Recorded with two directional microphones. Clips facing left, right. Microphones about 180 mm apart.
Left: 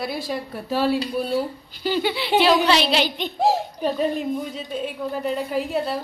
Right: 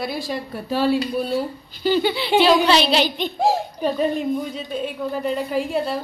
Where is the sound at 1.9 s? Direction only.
30° right (ahead or behind).